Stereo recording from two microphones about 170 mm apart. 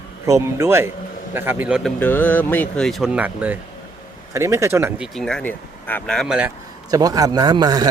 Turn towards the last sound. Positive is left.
turn(degrees=-25)  # may be behind; listen again after turning